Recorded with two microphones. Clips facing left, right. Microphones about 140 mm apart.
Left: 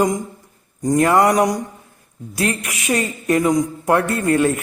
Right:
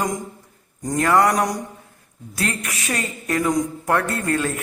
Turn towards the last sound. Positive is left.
turn(degrees=20)  # may be behind; listen again after turning